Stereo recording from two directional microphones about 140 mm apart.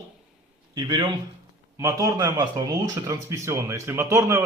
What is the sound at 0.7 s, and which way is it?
Speech, 30° right (ahead or behind).